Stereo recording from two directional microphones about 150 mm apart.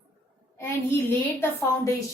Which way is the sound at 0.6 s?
15° left (ahead or behind).